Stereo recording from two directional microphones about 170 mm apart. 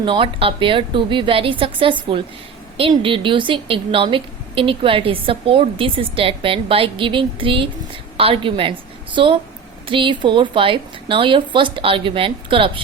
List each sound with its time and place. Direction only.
0.0 s a woman's voice: 30° right (ahead or behind)